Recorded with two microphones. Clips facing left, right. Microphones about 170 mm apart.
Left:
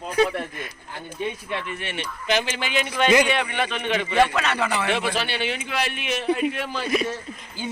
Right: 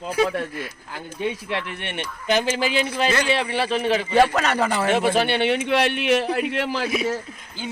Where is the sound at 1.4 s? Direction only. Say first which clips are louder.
Right 1 dB; 70° right (ahead or behind); by 6.9 s 90° right.